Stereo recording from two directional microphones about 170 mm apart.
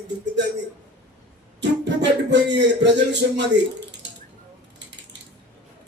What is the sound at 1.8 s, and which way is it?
Speech, 90° right.